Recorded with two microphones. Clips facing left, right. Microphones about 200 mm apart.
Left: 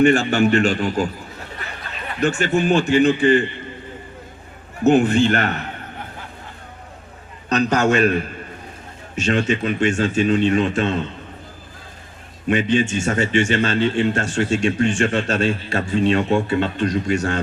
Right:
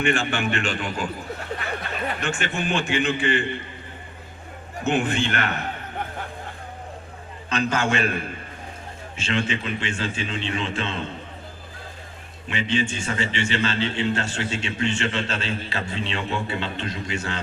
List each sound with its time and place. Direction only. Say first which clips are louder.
0.0 s a man's voice: left 9 dB; 40° left (ahead or behind)
2.2 s a man's voice: left 13 dB; 40° left (ahead or behind)
4.9 s a man's voice: left 9 dB; 40° left (ahead or behind)
7.5 s a man's voice: left 6 dB; 40° left (ahead or behind)
12.5 s a man's voice: left 7 dB; 45° left (ahead or behind)